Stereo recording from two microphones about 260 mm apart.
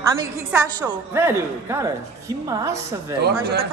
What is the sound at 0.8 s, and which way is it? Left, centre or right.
A man's voice, centre.